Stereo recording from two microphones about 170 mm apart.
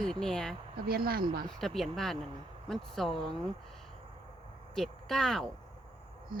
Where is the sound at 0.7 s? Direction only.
65° right (ahead or behind).